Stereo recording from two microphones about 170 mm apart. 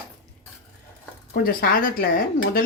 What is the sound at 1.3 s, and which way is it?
Speech, 60° left (ahead or behind).